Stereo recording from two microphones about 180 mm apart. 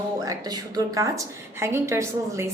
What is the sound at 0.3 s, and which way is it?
A woman's voice, 20° right (ahead or behind).